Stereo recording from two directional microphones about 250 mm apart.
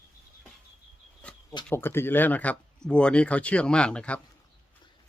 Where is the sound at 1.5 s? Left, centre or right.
Centre.